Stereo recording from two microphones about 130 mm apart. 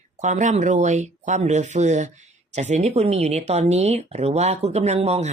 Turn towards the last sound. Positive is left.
turn(degrees=-50)  # may be behind; listen again after turning